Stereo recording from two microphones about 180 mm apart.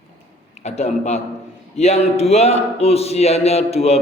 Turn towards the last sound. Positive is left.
turn(degrees=35)  # may be behind; listen again after turning